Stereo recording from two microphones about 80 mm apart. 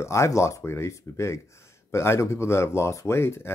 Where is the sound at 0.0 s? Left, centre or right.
Left.